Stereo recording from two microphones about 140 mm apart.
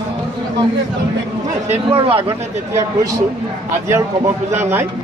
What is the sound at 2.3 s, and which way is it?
Speech, 25° right (ahead or behind).